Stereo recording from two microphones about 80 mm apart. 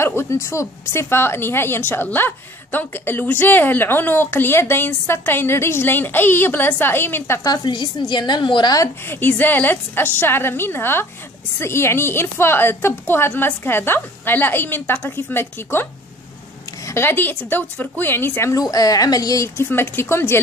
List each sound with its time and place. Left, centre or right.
0.0 s a woman's voice: left
7.4 s a woman's voice: left
9.0 s a woman's voice: left
18.5 s a woman's voice: left
19.5 s a woman's voice: left